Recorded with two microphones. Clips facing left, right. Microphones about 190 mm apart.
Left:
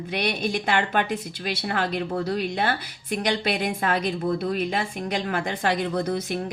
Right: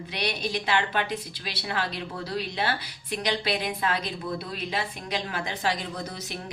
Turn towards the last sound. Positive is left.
turn(degrees=55)  # may be behind; listen again after turning